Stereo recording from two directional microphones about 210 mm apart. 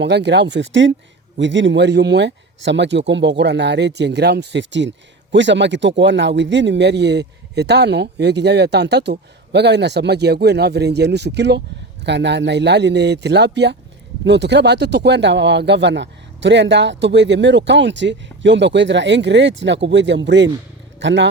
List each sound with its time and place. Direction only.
0.0 s speech: 55° right (ahead or behind)